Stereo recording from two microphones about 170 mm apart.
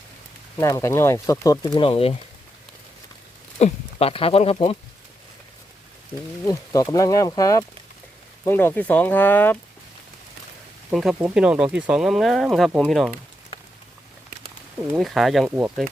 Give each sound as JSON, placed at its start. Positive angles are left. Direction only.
{"t": 0.6, "sound": "speech", "side_deg": 15}
{"t": 1.8, "sound": "speech", "side_deg": 35}
{"t": 3.6, "sound": "speech", "side_deg": 35}
{"t": 6.4, "sound": "speech", "side_deg": 20}
{"t": 10.9, "sound": "speech", "side_deg": -5}
{"t": 14.9, "sound": "speech", "side_deg": 0}